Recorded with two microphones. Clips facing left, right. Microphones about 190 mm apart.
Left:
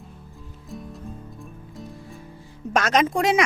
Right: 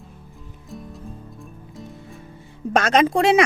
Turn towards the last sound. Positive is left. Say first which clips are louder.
# right 3 dB
turn(degrees=-30)  # may be behind; listen again after turning